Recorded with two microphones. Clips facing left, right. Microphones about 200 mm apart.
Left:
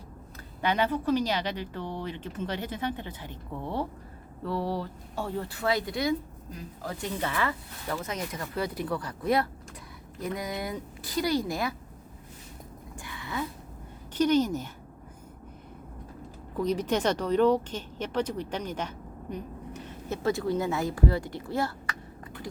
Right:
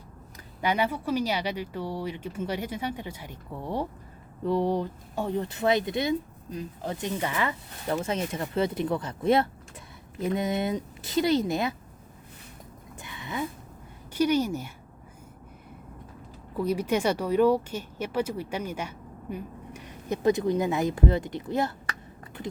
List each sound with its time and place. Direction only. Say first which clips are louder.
0.6 s speech: even; 10° right (ahead or behind)
13.0 s a sound: right 1 dB; 20° right (ahead or behind)
14.1 s speech: even; 10° right (ahead or behind)
16.6 s speech: right 1 dB; 10° right (ahead or behind)